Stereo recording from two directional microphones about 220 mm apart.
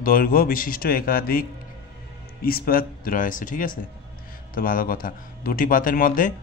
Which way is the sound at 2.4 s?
40° left (ahead or behind).